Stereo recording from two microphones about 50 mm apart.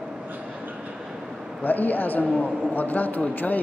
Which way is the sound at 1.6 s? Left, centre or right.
Left.